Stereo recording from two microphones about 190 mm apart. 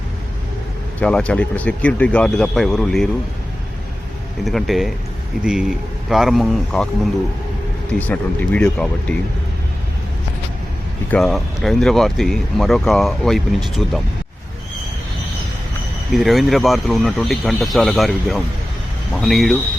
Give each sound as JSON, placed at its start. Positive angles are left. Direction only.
{"t": 0.9, "sound": "speech", "side_deg": 5}
{"t": 4.4, "sound": "speech", "side_deg": 0}
{"t": 7.9, "sound": "speech", "side_deg": 10}
{"t": 11.1, "sound": "speech", "side_deg": 0}
{"t": 16.1, "sound": "speech", "side_deg": 0}